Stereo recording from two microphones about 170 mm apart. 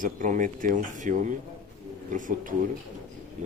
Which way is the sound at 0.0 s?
50° right (ahead or behind).